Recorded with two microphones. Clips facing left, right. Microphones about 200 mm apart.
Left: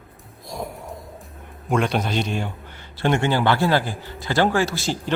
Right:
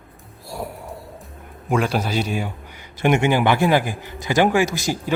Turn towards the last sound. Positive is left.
turn(degrees=-15)  # may be behind; listen again after turning